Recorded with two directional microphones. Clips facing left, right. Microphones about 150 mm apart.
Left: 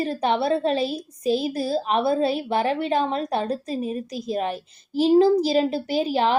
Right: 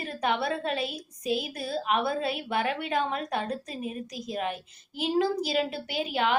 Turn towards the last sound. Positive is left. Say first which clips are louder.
# left 7 dB
turn(degrees=35)  # may be behind; listen again after turning